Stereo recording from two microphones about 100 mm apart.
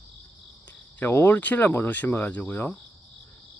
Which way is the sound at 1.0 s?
20° left (ahead or behind).